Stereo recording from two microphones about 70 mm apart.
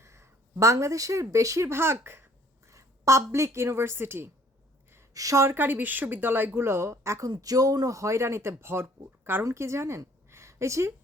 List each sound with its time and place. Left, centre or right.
0.0 s a sound: right
0.6 s speech: right
5.1 s speech: right
5.5 s speech: right
7.3 s speech: right
9.4 s a woman's voice: right